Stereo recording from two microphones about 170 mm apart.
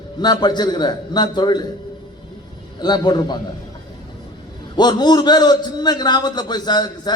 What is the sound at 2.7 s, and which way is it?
Speech, 25° left (ahead or behind).